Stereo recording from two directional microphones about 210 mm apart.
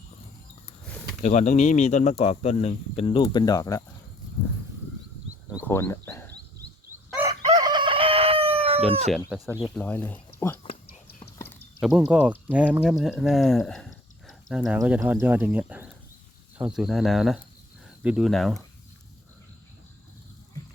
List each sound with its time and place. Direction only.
1.2 s speech: 35° left (ahead or behind); by 3.8 s 15° left (ahead or behind)
5.6 s speech: 10° left (ahead or behind)
7.6 s chicken: 20° right (ahead or behind)
9.6 s speech: 5° left (ahead or behind)
11.2 s a sound: 15° left (ahead or behind)
11.8 s speech: centre (ahead or behind)